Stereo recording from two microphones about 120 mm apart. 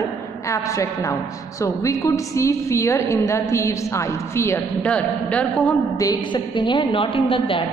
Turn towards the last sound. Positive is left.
turn(degrees=45)  # may be behind; listen again after turning